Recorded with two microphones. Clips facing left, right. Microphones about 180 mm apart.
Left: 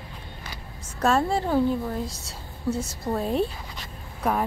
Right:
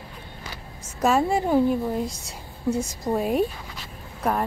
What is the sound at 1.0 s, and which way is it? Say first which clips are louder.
Speech: right 2 dB; 10° right (ahead or behind).